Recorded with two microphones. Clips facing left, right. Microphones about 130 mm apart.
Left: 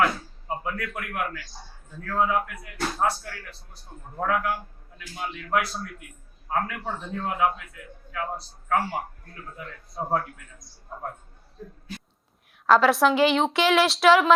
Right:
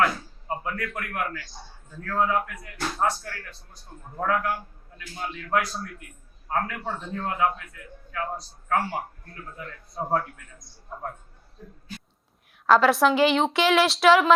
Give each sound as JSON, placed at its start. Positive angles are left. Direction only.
{"t": 0.0, "sound": "a sound", "side_deg": 5}
{"t": 2.0, "sound": "a woman's voice", "side_deg": 5}
{"t": 12.6, "sound": "a woman's voice", "side_deg": 0}